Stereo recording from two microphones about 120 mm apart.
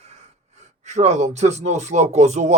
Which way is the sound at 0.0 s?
65° right (ahead or behind).